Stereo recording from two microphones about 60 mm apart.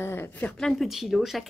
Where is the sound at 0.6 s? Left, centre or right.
Centre.